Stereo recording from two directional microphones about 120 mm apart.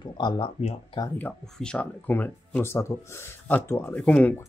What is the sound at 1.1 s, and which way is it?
Speech, 10° left (ahead or behind).